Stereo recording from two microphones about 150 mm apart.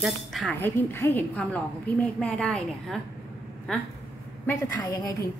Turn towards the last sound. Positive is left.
turn(degrees=20)  # may be behind; listen again after turning